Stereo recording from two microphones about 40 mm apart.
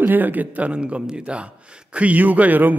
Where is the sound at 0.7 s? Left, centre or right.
Right.